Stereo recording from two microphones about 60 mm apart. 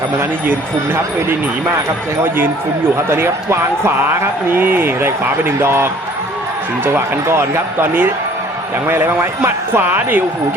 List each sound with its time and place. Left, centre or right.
0.9 s speech: right
7.3 s speech: right